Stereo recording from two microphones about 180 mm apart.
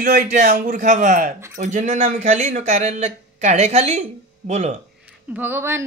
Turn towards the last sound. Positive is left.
turn(degrees=-15)  # may be behind; listen again after turning